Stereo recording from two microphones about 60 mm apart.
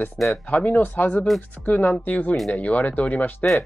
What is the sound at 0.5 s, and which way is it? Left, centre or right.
Speech, left.